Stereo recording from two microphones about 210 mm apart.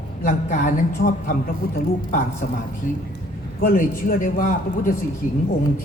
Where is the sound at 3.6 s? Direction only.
40° left (ahead or behind).